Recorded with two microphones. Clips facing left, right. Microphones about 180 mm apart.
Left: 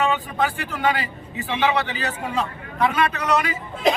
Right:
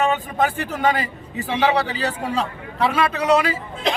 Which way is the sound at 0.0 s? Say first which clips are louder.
Right 2 dB; 45° right (ahead or behind).